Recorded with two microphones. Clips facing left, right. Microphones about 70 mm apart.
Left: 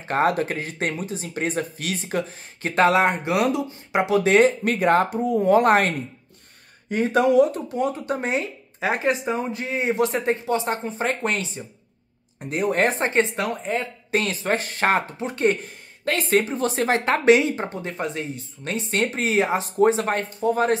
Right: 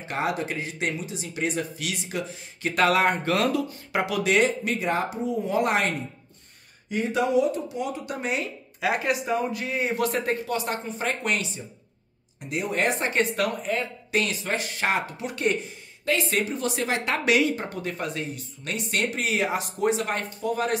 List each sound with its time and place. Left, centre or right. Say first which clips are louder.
0.1 s speech: left 6 dB; left
15.6 s speech: left 3 dB; left